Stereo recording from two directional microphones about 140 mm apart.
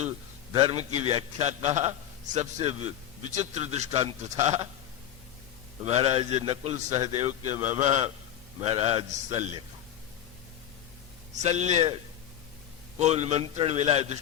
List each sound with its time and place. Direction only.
0.5 s a man's voice: 40° right (ahead or behind)
5.8 s a man's voice: 50° right (ahead or behind)
11.4 s a man's voice: 55° right (ahead or behind)
13.0 s a man's voice: 50° right (ahead or behind)